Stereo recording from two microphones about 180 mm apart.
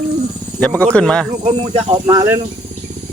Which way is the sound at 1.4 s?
35° right (ahead or behind).